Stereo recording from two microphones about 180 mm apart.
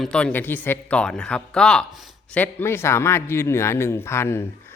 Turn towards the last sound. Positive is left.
turn(degrees=15)  # may be behind; listen again after turning